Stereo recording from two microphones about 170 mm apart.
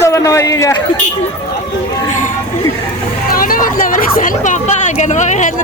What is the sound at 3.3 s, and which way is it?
A woman's voice, 55° left (ahead or behind).